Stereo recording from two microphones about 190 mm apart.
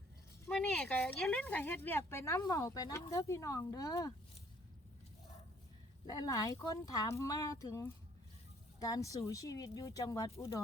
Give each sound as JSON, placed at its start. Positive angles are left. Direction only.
{"t": 0.4, "sound": "speech", "side_deg": 5}
{"t": 6.1, "sound": "speech", "side_deg": 20}